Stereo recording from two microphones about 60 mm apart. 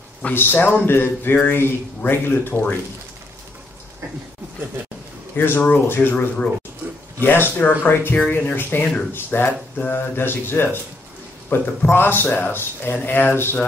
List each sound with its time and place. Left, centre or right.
0.2 s a man's voice: left
0.8 s speech: left
5.3 s speech: left